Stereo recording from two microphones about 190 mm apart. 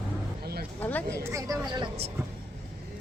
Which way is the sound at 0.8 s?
10° left (ahead or behind).